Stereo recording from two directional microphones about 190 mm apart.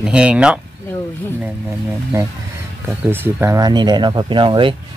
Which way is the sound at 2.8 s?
10° right (ahead or behind).